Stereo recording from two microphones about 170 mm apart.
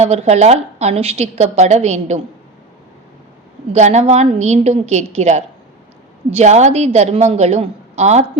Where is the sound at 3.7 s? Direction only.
40° right (ahead or behind).